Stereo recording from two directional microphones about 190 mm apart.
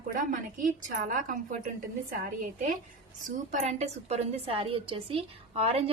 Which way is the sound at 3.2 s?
40° right (ahead or behind).